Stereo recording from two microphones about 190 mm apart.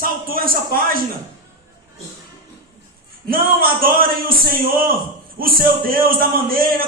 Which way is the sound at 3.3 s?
50° right (ahead or behind).